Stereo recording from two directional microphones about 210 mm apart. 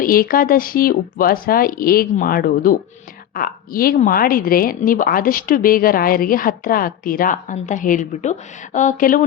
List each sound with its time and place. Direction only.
0.0 s a woman's voice: 45° left (ahead or behind)